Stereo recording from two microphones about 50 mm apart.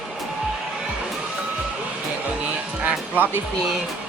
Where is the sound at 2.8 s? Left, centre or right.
Right.